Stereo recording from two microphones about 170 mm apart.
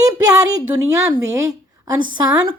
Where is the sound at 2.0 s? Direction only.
25° right (ahead or behind).